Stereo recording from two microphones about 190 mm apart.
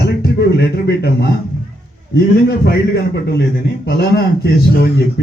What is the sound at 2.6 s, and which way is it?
A man's voice, 60° left (ahead or behind).